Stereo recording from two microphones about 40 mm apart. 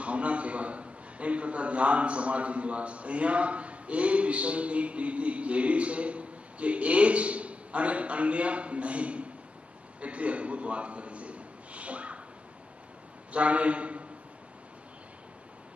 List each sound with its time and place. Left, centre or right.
0.0 s a man's voice: right
9.9 s a sound: right
13.3 s a man's voice: right